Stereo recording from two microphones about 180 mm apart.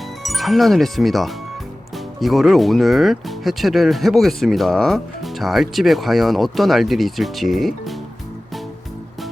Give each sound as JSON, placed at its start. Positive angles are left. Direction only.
{"t": 0.2, "sound": "speech", "side_deg": 0}